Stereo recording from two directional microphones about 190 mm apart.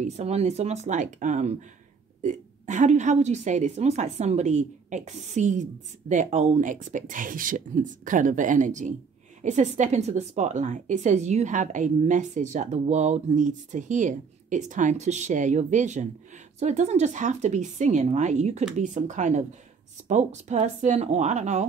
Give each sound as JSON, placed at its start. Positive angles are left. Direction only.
{"t": 0.0, "sound": "a woman's voice", "side_deg": -35}